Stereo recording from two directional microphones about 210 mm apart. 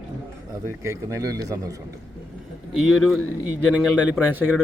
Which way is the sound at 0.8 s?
15° right (ahead or behind).